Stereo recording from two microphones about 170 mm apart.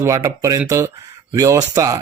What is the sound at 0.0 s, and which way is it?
Speech, 15° right (ahead or behind).